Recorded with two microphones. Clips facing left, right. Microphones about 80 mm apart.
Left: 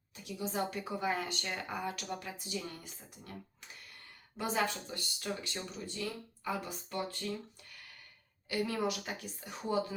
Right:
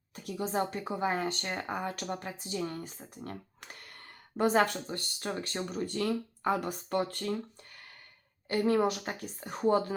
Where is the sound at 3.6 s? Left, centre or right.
Right.